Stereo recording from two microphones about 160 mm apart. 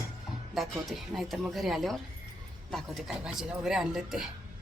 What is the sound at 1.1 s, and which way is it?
Speech, centre (ahead or behind).